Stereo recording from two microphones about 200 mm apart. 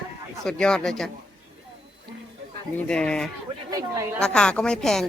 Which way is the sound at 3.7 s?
15° right (ahead or behind).